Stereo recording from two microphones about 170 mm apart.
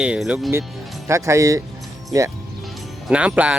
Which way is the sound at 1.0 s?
15° right (ahead or behind).